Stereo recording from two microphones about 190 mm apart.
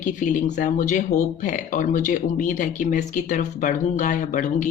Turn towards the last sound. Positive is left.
turn(degrees=40)  # may be behind; listen again after turning